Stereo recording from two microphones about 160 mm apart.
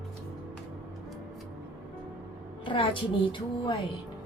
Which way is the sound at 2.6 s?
30° left (ahead or behind).